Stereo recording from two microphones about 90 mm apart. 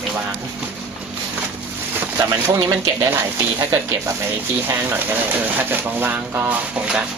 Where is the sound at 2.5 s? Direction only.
45° right (ahead or behind).